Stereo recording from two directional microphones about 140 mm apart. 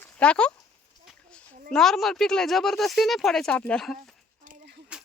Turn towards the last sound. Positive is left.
turn(degrees=-5)  # may be behind; listen again after turning